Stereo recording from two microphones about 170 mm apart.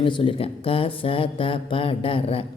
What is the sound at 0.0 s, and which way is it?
A woman's voice, 30° left (ahead or behind).